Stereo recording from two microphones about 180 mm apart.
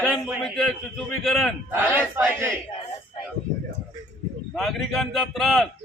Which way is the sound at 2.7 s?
30° left (ahead or behind).